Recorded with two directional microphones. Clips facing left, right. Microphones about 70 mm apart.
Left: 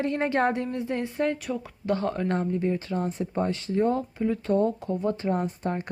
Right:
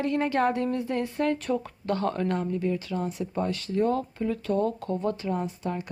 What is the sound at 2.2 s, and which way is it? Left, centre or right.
Speech, left.